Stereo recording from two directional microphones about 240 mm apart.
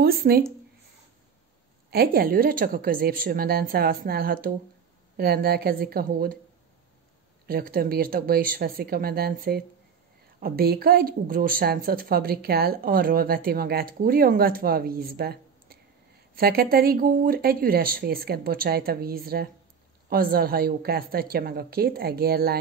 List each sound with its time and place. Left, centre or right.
0.0 s speech: right
1.9 s speech: right
7.4 s speech: right